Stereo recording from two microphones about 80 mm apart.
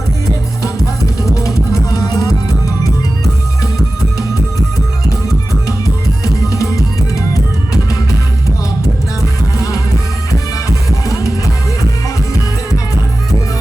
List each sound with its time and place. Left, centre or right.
1.2 s music: left
6.5 s music: left
11.1 s music: left